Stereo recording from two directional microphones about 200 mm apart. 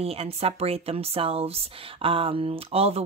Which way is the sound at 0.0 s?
30° right (ahead or behind).